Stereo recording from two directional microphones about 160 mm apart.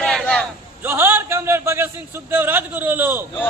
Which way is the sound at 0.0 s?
5° left (ahead or behind).